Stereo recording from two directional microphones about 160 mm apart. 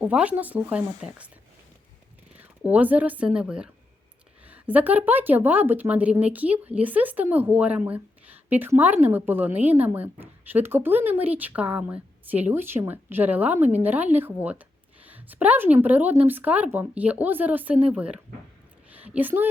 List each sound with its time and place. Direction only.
0.0 s a woman's voice: 10° right (ahead or behind)
2.3 s a woman's voice: 10° right (ahead or behind)